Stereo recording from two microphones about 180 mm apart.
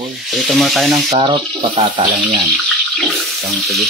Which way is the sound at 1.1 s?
30° right (ahead or behind).